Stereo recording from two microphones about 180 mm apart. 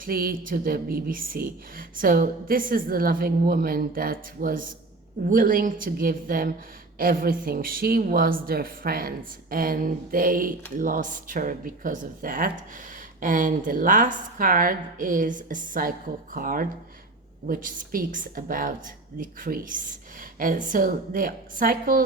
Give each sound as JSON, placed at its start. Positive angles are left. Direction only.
{"t": 0.0, "sound": "a woman's voice", "side_deg": -55}